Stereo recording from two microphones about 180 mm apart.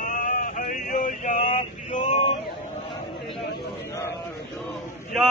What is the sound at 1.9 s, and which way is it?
Male singing, 40° left (ahead or behind).